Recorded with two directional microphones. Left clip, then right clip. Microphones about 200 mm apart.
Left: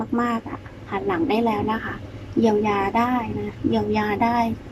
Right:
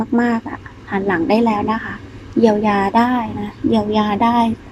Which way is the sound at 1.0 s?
20° right (ahead or behind).